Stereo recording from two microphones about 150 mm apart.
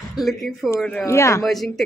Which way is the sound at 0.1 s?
Centre (ahead or behind).